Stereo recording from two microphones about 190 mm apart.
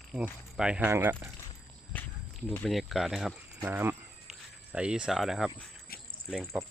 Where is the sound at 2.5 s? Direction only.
5° left (ahead or behind).